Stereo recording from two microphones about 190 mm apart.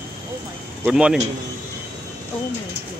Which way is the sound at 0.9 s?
5° right (ahead or behind).